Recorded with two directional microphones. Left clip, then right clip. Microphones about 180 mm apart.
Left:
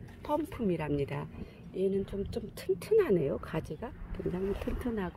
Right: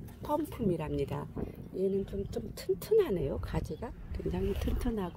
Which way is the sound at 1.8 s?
5° left (ahead or behind).